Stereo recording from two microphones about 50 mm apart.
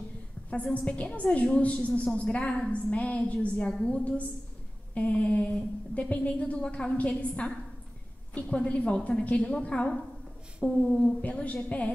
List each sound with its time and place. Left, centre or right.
0.7 s a woman's voice: left
11.1 s a woman's voice: left